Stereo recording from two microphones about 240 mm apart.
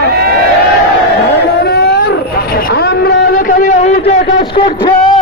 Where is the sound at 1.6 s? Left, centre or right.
Left.